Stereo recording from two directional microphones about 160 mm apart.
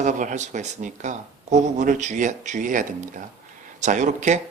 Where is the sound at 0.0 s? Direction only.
50° right (ahead or behind).